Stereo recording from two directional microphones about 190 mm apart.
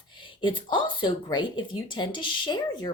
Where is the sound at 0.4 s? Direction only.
25° left (ahead or behind).